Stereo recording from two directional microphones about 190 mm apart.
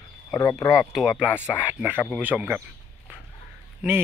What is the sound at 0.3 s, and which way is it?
Speech, 15° left (ahead or behind).